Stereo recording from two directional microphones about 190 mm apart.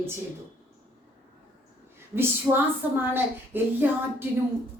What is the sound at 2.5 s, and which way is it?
Speech, 20° right (ahead or behind).